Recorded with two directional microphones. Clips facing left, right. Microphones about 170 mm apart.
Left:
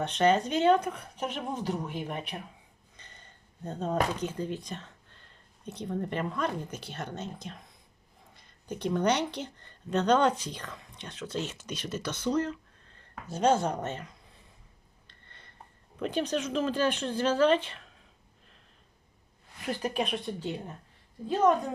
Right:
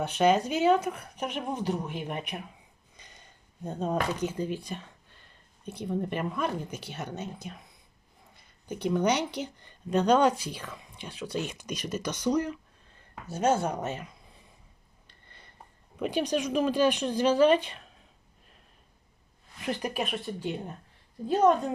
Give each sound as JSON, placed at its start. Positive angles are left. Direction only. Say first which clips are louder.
{"t": 0.0, "sound": "speech", "louder": "right 1 dB", "side_deg": -10}
{"t": 15.0, "sound": "a sound", "louder": "right 1 dB", "side_deg": -10}
{"t": 16.0, "sound": "speech", "louder": "right 2 dB", "side_deg": -10}
{"t": 19.6, "sound": "speech", "louder": "right 1 dB", "side_deg": -20}
{"t": 19.9, "sound": "speech", "louder": "left 1 dB", "side_deg": -5}